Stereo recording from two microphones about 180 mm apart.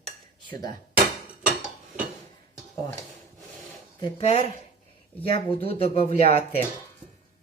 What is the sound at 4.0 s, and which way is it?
Speech, 35° left (ahead or behind).